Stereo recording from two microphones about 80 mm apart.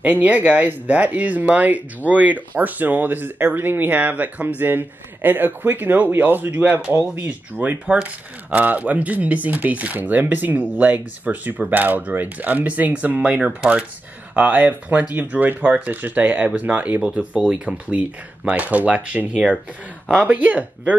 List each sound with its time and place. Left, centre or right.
0.0 s speech: centre